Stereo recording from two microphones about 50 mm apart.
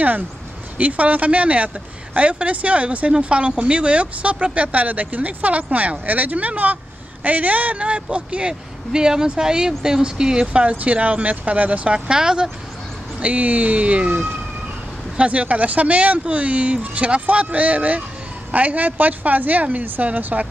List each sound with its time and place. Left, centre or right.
0.7 s speech: right
13.2 s speech: right